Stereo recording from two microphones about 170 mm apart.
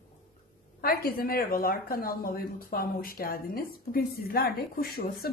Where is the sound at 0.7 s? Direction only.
60° left (ahead or behind).